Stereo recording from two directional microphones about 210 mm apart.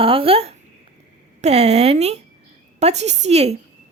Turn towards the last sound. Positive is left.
turn(degrees=-30)  # may be behind; listen again after turning